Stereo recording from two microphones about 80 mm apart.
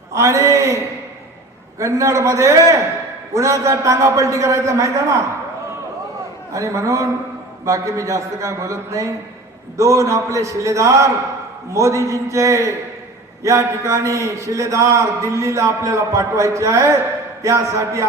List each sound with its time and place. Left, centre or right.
0.1 s a man's voice: right
1.8 s a man's voice: right
6.5 s a man's voice: right